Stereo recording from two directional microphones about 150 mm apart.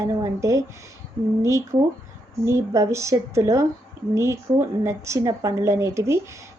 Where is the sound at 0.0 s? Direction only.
20° right (ahead or behind).